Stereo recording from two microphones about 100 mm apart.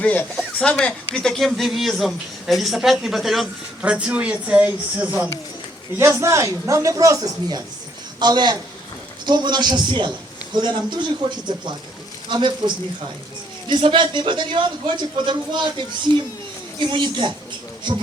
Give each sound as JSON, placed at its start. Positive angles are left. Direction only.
{"t": 0.0, "sound": "speech", "side_deg": 15}
{"t": 6.0, "sound": "a man's voice", "side_deg": -30}
{"t": 8.2, "sound": "a man's voice", "side_deg": -45}
{"t": 16.8, "sound": "a man's voice", "side_deg": -55}